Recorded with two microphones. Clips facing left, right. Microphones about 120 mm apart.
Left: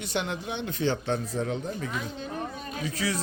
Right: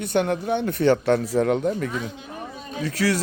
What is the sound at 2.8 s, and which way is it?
Speech, 75° right (ahead or behind).